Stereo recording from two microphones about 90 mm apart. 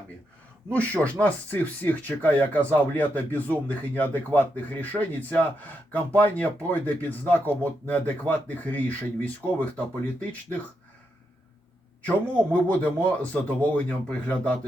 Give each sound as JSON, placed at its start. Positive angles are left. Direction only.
{"t": 0.7, "sound": "speech", "side_deg": 15}
{"t": 12.6, "sound": "speech", "side_deg": 15}